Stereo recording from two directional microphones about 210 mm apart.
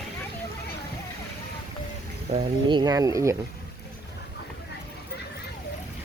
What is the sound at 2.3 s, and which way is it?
Speech, 25° right (ahead or behind).